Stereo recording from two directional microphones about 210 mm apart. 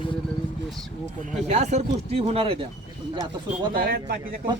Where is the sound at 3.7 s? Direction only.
45° right (ahead or behind).